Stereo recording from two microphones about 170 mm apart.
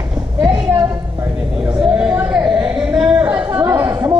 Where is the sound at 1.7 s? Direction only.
5° right (ahead or behind).